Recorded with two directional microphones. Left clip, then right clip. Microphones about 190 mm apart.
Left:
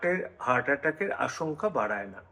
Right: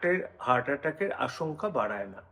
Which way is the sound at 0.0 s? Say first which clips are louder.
Even; centre (ahead or behind).